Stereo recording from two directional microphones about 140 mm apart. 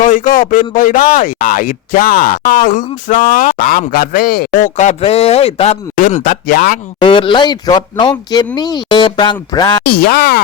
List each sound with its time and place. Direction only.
0.0 s speech: 70° left (ahead or behind); by 5.7 s 45° left (ahead or behind)
6.0 s speech: 70° left (ahead or behind)
7.0 s speech: 35° left (ahead or behind)
9.8 s speech: 90° left